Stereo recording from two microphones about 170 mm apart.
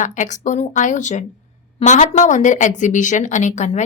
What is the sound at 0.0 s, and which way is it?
A woman's voice, 45° left (ahead or behind).